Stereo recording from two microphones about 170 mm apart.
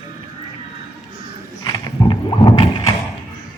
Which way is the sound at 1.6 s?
25° left (ahead or behind).